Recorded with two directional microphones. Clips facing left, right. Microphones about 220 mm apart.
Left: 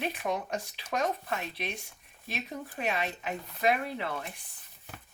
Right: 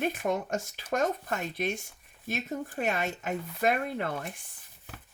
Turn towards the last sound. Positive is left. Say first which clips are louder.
# right 1 dB
turn(degrees=-50)  # may be behind; listen again after turning